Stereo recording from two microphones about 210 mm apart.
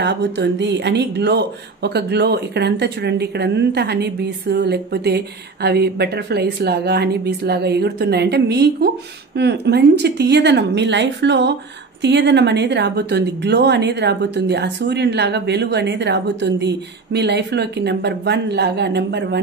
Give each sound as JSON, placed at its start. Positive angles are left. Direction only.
{"t": 0.0, "sound": "speech", "side_deg": -55}